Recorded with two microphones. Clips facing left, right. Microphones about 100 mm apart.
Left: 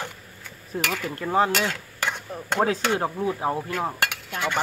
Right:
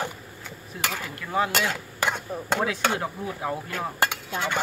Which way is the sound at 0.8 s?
40° left (ahead or behind).